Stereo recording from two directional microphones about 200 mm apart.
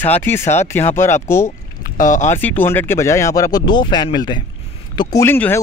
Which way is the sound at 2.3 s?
10° left (ahead or behind).